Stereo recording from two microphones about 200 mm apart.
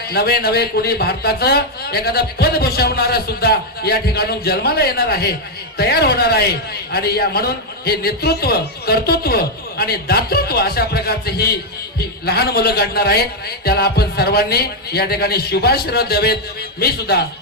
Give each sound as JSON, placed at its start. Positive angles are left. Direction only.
{"t": 0.1, "sound": "speech", "side_deg": 50}